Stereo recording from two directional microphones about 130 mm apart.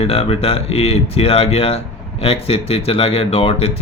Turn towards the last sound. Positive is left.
turn(degrees=50)  # may be behind; listen again after turning